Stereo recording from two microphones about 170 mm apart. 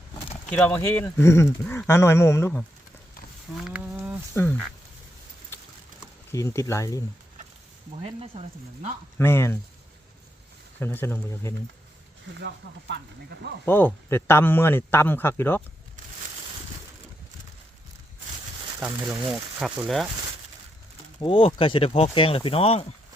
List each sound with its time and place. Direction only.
0.5 s speech: 5° left (ahead or behind)
3.6 s a sound: 10° right (ahead or behind)
4.4 s speech: 5° left (ahead or behind)
6.3 s speech: 20° left (ahead or behind)
8.0 s speech: 35° right (ahead or behind)
9.1 s speech: 15° left (ahead or behind)
10.8 s speech: 10° left (ahead or behind)
12.4 s speech: 85° right
13.7 s speech: 10° left (ahead or behind)
18.8 s speech: 5° right (ahead or behind)
21.2 s speech: 30° left (ahead or behind)